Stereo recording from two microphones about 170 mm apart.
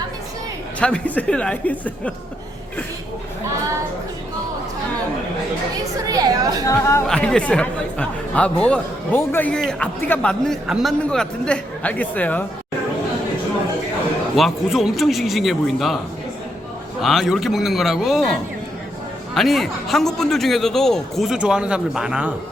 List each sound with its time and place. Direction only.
0.8 s speech: 5° left (ahead or behind)
6.1 s a woman's voice: 20° right (ahead or behind)
6.7 s speech: 15° left (ahead or behind)
7.1 s speech: 5° left (ahead or behind)
14.3 s a man's voice: centre (ahead or behind)
17.0 s a man's voice: centre (ahead or behind)
19.3 s a man's voice: centre (ahead or behind)